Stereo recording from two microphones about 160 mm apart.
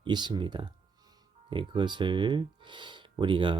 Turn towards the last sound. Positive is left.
turn(degrees=-30)  # may be behind; listen again after turning